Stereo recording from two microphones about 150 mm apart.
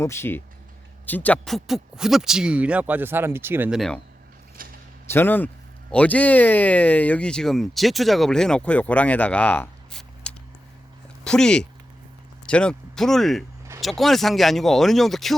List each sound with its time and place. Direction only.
0.0 s speech: 15° left (ahead or behind); by 3.7 s 15° right (ahead or behind)
3.7 s speech: centre (ahead or behind)
4.6 s a sound: 70° right (ahead or behind)
5.1 s speech: 15° left (ahead or behind)